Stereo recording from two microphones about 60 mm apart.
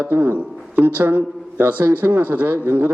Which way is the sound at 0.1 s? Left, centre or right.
Right.